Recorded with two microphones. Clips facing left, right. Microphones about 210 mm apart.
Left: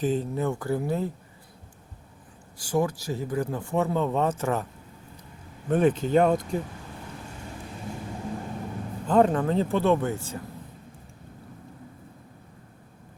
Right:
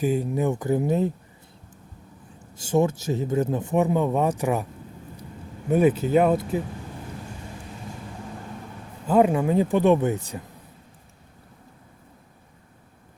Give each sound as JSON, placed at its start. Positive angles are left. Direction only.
{"t": 0.0, "sound": "speech", "side_deg": -10}
{"t": 2.6, "sound": "speech", "side_deg": -25}
{"t": 5.6, "sound": "speech", "side_deg": -10}
{"t": 9.0, "sound": "speech", "side_deg": -10}